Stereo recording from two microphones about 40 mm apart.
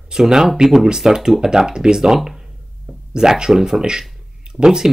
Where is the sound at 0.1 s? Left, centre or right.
Centre.